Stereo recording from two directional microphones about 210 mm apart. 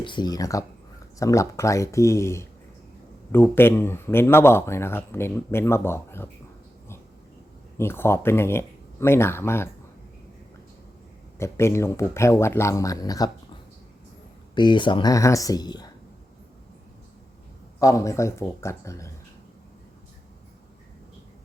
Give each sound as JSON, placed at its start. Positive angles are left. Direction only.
{"t": 0.0, "sound": "speech", "side_deg": 20}
{"t": 7.8, "sound": "speech", "side_deg": 10}
{"t": 11.3, "sound": "speech", "side_deg": 15}
{"t": 14.5, "sound": "speech", "side_deg": 20}
{"t": 17.7, "sound": "speech", "side_deg": 15}